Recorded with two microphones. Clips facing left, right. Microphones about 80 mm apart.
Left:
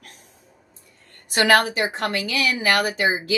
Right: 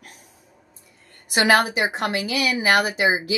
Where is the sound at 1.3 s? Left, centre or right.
Centre.